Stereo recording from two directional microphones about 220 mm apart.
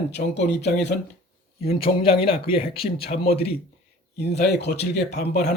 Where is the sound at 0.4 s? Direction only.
50° left (ahead or behind).